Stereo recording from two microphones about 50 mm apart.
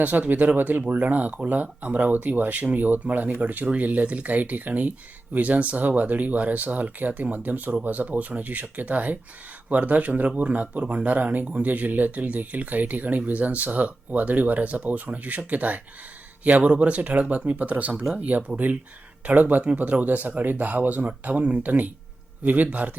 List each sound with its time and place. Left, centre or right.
0.0 s speech: right